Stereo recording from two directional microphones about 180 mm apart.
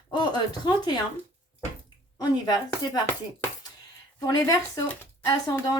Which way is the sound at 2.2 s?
20° left (ahead or behind).